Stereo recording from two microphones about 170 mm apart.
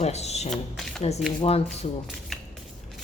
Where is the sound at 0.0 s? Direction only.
40° left (ahead or behind).